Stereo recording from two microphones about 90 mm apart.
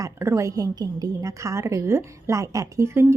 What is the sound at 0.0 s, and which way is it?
A woman's voice, 35° right (ahead or behind).